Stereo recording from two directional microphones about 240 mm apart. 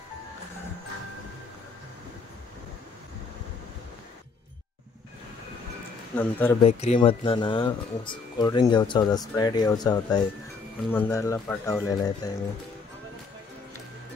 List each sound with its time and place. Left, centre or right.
6.1 s speech: centre
6.6 s speech: left